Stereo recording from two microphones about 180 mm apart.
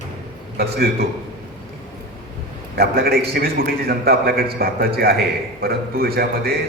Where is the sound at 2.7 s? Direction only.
60° right (ahead or behind).